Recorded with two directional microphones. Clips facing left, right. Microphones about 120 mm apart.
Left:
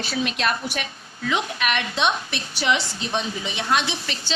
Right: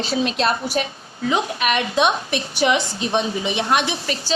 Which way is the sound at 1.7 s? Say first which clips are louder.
Right 5 dB; 15° right (ahead or behind).